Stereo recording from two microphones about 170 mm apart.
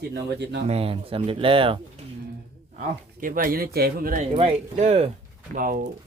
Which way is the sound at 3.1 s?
55° right (ahead or behind).